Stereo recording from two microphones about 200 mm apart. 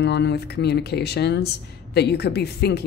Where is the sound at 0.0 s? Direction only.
60° left (ahead or behind).